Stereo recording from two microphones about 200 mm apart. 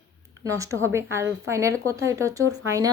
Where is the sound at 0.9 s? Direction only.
15° right (ahead or behind).